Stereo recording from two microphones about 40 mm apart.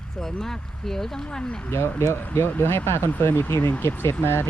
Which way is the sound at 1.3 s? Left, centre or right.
Left.